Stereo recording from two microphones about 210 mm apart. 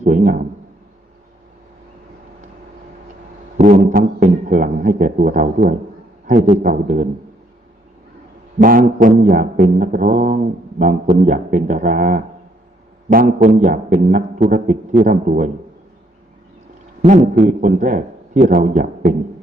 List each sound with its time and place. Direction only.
0.0 s a man's voice: 35° right (ahead or behind)
3.6 s mantra: 35° right (ahead or behind)
8.5 s mantra: 40° right (ahead or behind)
17.0 s a man's voice: 35° right (ahead or behind)